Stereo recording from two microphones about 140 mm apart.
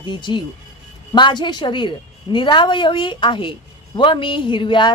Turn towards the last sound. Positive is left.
turn(degrees=35)  # may be behind; listen again after turning